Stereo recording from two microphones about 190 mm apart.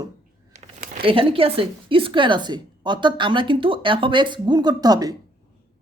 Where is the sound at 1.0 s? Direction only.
30° right (ahead or behind).